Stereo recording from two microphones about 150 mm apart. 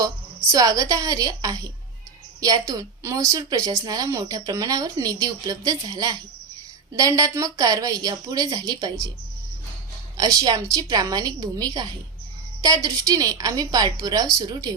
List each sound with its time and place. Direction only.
0.5 s a woman's voice: 25° right (ahead or behind)
10.2 s a woman's voice: 25° right (ahead or behind)